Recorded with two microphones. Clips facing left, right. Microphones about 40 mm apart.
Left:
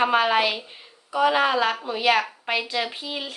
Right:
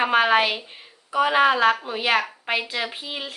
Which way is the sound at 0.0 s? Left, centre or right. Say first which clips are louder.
Right 1 dB; centre.